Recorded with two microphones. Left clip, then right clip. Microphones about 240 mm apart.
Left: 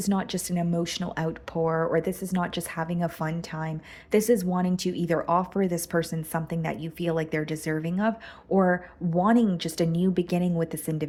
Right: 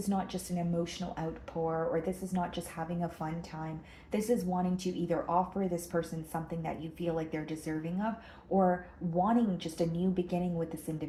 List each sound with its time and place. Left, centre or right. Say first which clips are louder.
0.1 s speech: left 6 dB; left